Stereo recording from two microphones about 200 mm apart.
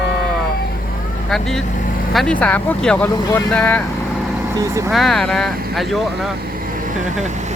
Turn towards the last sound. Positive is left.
turn(degrees=0)  # may be behind; listen again after turning